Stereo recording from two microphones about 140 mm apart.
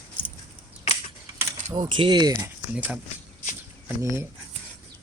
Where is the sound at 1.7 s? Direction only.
35° right (ahead or behind).